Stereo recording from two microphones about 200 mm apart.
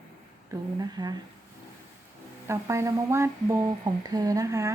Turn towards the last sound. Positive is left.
turn(degrees=-15)  # may be behind; listen again after turning